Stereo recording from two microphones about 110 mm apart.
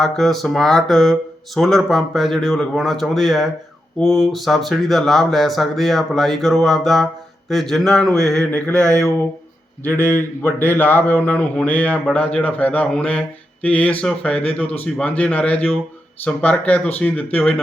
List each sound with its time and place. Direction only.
0.0 s speech: centre (ahead or behind)